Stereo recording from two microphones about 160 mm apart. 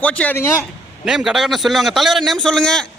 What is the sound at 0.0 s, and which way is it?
Speech, 10° left (ahead or behind).